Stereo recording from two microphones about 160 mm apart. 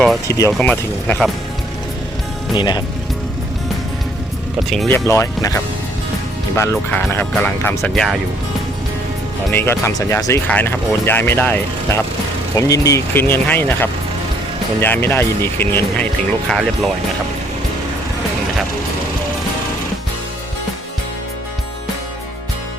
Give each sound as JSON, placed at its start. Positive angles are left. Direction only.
{"t": 0.3, "sound": "speech", "side_deg": 20}
{"t": 0.5, "sound": "speech", "side_deg": 5}
{"t": 2.6, "sound": "speech", "side_deg": 25}
{"t": 4.9, "sound": "speech", "side_deg": 15}
{"t": 6.6, "sound": "speech", "side_deg": 15}
{"t": 7.9, "sound": "speech", "side_deg": 0}
{"t": 9.5, "sound": "speech", "side_deg": 15}
{"t": 16.5, "sound": "speech", "side_deg": 0}